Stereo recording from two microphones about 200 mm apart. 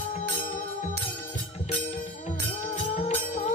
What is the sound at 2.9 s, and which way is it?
Music, 35° left (ahead or behind).